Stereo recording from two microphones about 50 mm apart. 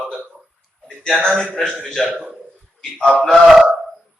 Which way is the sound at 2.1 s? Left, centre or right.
Right.